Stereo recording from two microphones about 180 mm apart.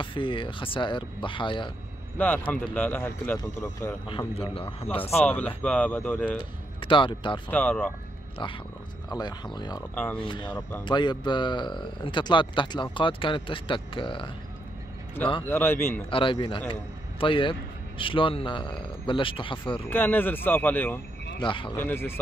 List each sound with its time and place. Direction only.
0.0 s a man's voice: 30° left (ahead or behind)
2.1 s speech: 10° left (ahead or behind)
4.4 s speech: 30° left (ahead or behind)
5.2 s speech: 5° left (ahead or behind)
6.8 s a man's voice: 30° left (ahead or behind)
7.4 s speech: 10° left (ahead or behind)
9.1 s a man's voice: 25° left (ahead or behind)
15.4 s speech: 10° left (ahead or behind)
16.1 s a man's voice: 30° left (ahead or behind)
19.9 s speech: 10° left (ahead or behind)
21.4 s a man's voice: 25° left (ahead or behind)
21.7 s speech: 10° left (ahead or behind)